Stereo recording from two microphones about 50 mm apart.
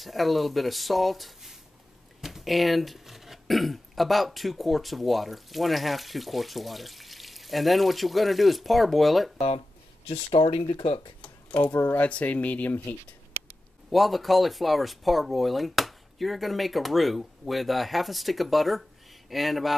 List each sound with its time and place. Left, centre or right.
0.0 s speech: centre
11.1 s a sound: left
11.9 s speech: left
13.8 s speech: centre